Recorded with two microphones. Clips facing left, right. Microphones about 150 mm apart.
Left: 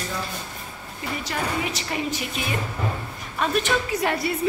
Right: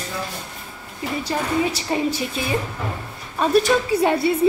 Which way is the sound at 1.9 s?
30° right (ahead or behind).